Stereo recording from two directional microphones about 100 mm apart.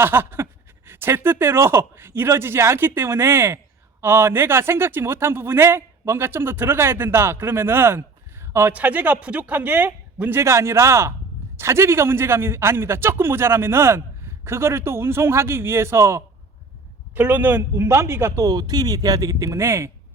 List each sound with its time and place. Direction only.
0.0 s a man's voice: 25° right (ahead or behind)